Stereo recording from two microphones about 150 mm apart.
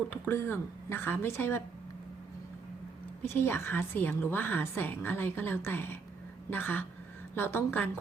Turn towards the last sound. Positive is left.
turn(degrees=15)  # may be behind; listen again after turning